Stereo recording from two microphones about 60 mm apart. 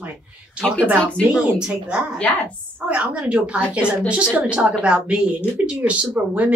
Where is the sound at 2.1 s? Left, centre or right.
Centre.